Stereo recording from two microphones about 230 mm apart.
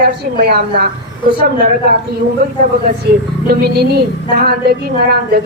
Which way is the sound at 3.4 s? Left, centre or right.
Right.